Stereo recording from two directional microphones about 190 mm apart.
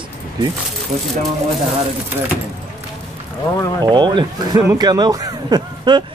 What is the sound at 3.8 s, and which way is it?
Speech, 25° right (ahead or behind).